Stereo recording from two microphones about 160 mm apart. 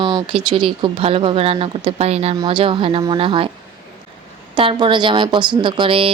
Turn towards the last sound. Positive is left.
turn(degrees=-35)  # may be behind; listen again after turning